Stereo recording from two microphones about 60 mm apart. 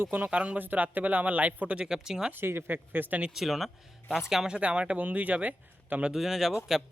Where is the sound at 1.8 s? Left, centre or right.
Centre.